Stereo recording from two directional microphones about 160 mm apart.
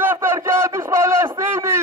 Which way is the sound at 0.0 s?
15° right (ahead or behind).